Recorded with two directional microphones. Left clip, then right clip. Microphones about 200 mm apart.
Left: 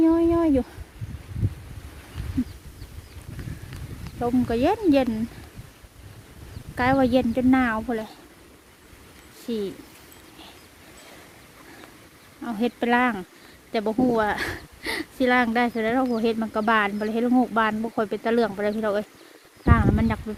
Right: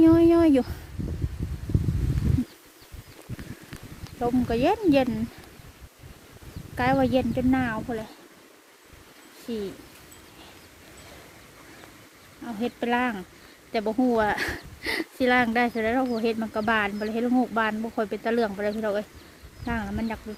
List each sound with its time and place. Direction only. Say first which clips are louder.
0.0 s a sound: right 2 dB; 10° right (ahead or behind)
4.2 s speech: left 1 dB; 5° left (ahead or behind)
6.7 s speech: left 2 dB; 10° left (ahead or behind)
9.5 s speech: left 4 dB; 25° left (ahead or behind)
12.5 s speech: left 4 dB; 25° left (ahead or behind)
19.6 s a sound: left 8 dB; 15° left (ahead or behind)